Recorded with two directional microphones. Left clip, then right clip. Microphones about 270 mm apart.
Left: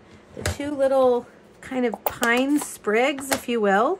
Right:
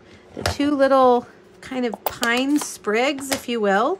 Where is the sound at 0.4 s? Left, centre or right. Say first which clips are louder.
Right 4 dB; right.